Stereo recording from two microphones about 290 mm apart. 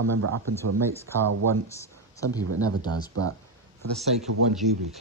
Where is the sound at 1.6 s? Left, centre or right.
Centre.